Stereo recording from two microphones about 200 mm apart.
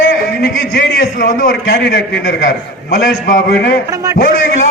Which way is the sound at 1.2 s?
45° left (ahead or behind).